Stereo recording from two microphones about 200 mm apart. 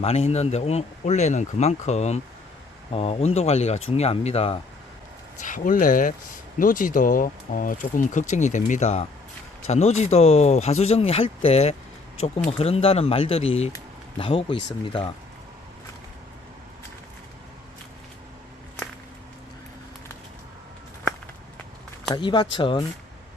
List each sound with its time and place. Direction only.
0.0 s speech: 30° left (ahead or behind)
5.4 s speech: 40° left (ahead or behind)
22.1 s speech: 25° left (ahead or behind)